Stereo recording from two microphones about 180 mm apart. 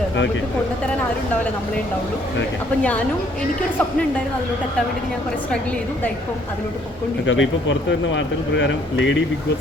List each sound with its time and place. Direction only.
7.3 s speech: 90° left